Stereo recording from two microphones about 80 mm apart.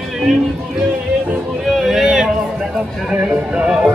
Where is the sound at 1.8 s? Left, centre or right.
Centre.